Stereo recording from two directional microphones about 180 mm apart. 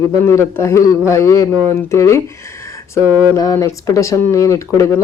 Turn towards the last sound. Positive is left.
turn(degrees=15)  # may be behind; listen again after turning